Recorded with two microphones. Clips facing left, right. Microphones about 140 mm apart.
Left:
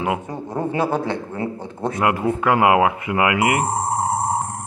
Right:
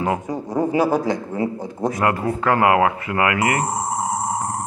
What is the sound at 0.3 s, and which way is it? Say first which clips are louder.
Speech: right 4 dB; 10° right (ahead or behind).